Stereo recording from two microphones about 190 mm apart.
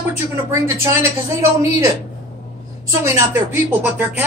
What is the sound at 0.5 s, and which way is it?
Speech, 15° right (ahead or behind).